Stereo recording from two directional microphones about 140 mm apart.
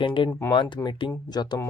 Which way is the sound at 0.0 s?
35° left (ahead or behind).